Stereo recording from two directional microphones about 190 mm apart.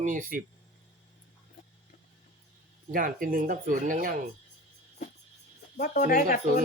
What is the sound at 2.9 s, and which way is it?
Speech, 45° right (ahead or behind).